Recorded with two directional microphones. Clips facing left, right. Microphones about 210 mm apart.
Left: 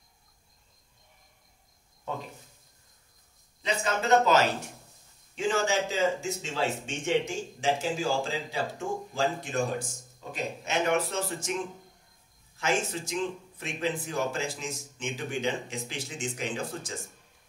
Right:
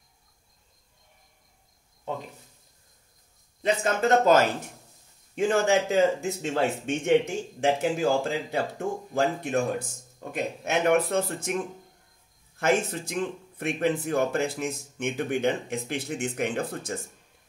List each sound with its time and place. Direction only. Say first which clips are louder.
3.6 s speech: right 5 dB; 50° right (ahead or behind)